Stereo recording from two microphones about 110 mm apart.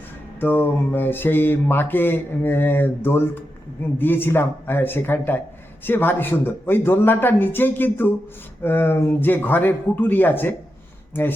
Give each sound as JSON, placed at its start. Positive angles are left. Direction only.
{"t": 0.3, "sound": "mantra", "side_deg": 20}
{"t": 8.6, "sound": "speech", "side_deg": 20}